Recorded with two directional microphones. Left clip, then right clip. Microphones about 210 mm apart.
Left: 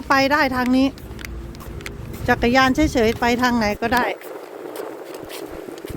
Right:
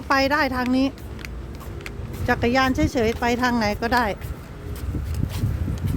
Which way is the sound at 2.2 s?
15° left (ahead or behind).